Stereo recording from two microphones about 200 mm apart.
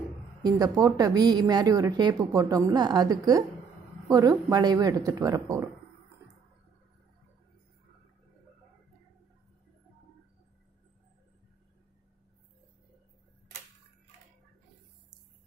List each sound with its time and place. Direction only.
0.4 s a woman's voice: 20° right (ahead or behind)